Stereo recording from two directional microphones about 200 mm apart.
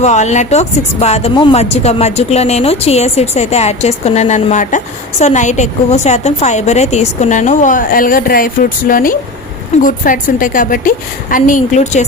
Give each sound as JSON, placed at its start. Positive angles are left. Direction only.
{"t": 0.0, "sound": "speech", "side_deg": 35}